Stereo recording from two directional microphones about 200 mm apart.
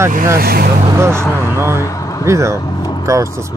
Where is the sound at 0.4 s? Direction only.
50° right (ahead or behind).